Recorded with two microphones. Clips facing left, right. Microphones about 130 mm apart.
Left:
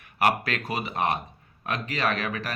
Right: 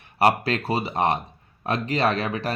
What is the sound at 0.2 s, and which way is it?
Speech, 35° right (ahead or behind).